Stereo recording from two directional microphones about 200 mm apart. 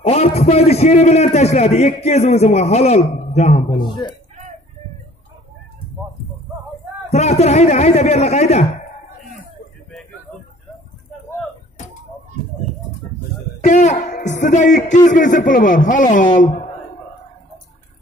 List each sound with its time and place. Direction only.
0.0 s a man's voice: 30° left (ahead or behind)
7.1 s a man's voice: 35° left (ahead or behind)
13.6 s a man's voice: 35° left (ahead or behind)